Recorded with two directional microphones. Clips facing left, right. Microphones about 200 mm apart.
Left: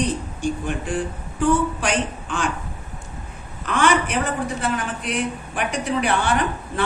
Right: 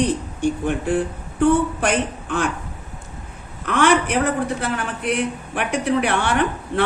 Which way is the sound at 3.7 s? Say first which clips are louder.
Right 2 dB; 60° right (ahead or behind).